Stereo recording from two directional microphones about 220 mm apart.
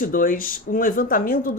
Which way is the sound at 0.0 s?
40° left (ahead or behind).